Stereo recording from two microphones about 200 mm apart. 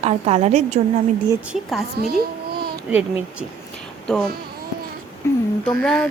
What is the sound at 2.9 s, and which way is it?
Speech, 5° right (ahead or behind).